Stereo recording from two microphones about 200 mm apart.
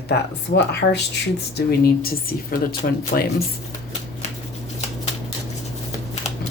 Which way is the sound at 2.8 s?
45° left (ahead or behind).